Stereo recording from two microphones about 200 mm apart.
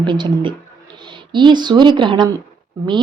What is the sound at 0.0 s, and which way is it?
A woman's voice, 25° right (ahead or behind).